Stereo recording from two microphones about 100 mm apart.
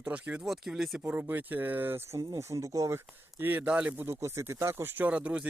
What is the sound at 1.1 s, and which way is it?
Speech, 20° right (ahead or behind).